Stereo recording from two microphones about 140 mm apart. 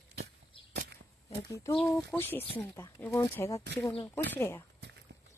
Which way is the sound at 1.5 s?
20° left (ahead or behind).